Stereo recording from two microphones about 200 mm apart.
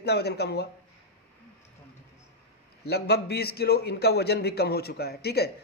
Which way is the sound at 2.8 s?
55° left (ahead or behind).